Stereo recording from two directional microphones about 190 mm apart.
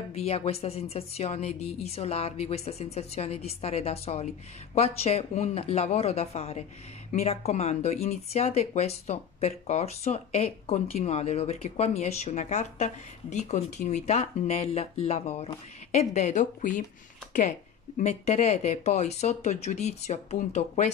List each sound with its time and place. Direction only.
0.1 s speech: 35° left (ahead or behind)